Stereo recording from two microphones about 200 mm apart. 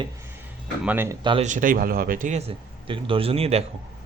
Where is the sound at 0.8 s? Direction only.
10° right (ahead or behind).